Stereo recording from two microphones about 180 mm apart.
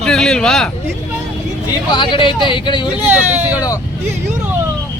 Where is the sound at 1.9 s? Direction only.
25° left (ahead or behind).